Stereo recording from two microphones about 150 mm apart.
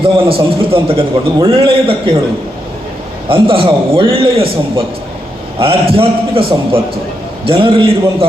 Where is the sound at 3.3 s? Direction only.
35° right (ahead or behind).